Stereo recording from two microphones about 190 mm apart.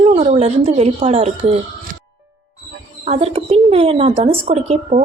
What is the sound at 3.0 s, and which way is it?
A woman's voice, 35° right (ahead or behind).